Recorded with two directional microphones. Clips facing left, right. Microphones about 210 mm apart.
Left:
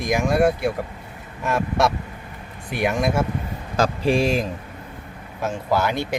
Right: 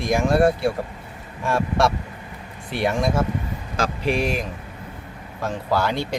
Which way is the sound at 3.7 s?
35° left (ahead or behind).